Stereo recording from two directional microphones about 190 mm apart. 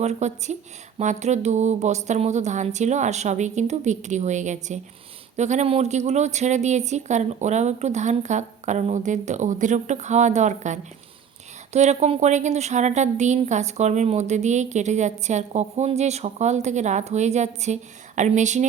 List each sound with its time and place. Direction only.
0.0 s a woman's voice: 35° right (ahead or behind)